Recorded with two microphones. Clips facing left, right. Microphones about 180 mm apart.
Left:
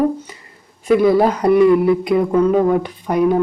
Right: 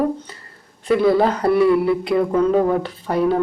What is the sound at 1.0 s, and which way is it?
Speech, 15° left (ahead or behind).